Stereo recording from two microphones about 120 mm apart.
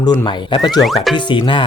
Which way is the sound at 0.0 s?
40° left (ahead or behind).